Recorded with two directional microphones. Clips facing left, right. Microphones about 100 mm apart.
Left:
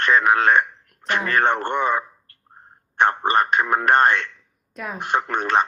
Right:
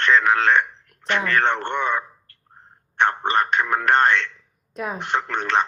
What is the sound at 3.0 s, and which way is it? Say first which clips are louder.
Speech: left 2 dB; 10° left (ahead or behind).